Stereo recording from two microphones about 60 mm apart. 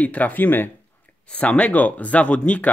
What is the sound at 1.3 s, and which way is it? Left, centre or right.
Speech, left.